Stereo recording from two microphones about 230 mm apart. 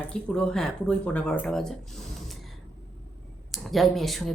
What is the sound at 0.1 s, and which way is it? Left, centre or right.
Speech, centre.